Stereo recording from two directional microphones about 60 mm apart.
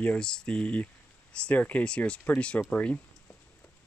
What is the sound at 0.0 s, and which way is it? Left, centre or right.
Speech, centre.